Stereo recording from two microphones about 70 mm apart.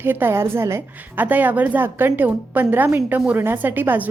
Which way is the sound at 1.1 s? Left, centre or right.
Right.